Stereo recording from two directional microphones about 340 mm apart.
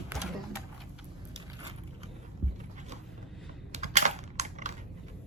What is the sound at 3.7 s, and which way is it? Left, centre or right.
Typing, centre.